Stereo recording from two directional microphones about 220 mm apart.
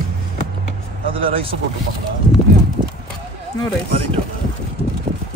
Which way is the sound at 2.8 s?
20° right (ahead or behind).